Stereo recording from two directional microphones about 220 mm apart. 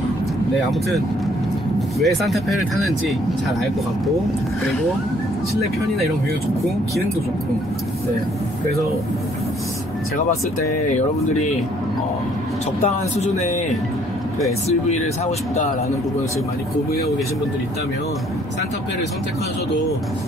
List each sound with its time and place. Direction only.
2.0 s speech: centre (ahead or behind)
12.8 s speech: 30° left (ahead or behind)